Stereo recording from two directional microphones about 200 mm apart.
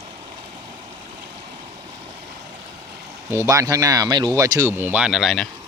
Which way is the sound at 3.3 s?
15° right (ahead or behind).